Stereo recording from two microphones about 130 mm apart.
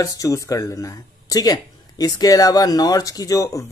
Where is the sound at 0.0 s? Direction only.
25° left (ahead or behind).